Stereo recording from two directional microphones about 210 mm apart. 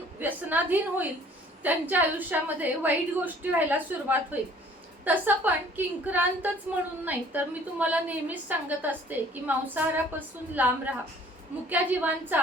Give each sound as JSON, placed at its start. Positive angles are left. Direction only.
{"t": 0.2, "sound": "a woman's voice", "side_deg": -10}